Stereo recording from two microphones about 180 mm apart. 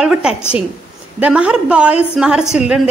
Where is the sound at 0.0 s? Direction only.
5° right (ahead or behind).